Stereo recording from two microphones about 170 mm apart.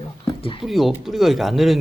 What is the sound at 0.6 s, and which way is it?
Speech, centre (ahead or behind).